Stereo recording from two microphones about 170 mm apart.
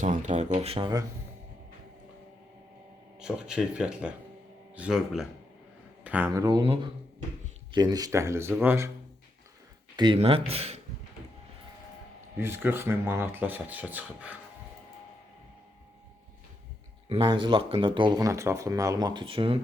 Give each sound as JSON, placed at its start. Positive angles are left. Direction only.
{"t": 0.0, "sound": "speech", "side_deg": -45}
{"t": 3.2, "sound": "speech", "side_deg": -5}
{"t": 9.9, "sound": "speech", "side_deg": -30}
{"t": 12.4, "sound": "speech", "side_deg": -15}
{"t": 17.1, "sound": "speech", "side_deg": -30}